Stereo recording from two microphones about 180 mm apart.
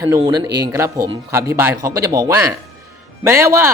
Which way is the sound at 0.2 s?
25° right (ahead or behind).